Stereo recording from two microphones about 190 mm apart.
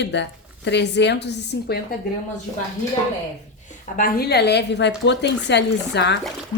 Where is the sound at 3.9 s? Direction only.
50° left (ahead or behind); by 6.1 s 65° left (ahead or behind).